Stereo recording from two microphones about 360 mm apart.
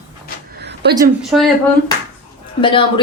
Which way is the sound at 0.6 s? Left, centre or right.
Right.